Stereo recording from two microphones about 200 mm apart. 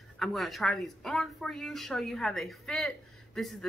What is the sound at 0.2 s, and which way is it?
A woman's voice, centre (ahead or behind).